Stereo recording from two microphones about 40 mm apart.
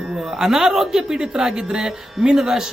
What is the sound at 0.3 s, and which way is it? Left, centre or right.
Speech, centre.